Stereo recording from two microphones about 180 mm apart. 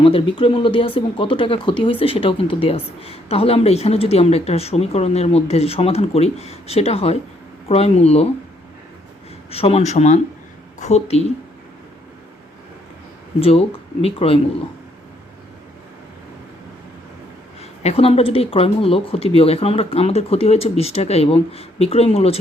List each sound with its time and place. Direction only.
0.0 s speech: 30° left (ahead or behind)
9.5 s a woman's voice: 35° left (ahead or behind)
13.4 s speech: 35° left (ahead or behind)
17.6 s speech: 35° left (ahead or behind)